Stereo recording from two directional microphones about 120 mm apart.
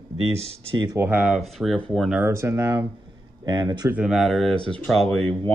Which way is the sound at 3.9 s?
5° right (ahead or behind).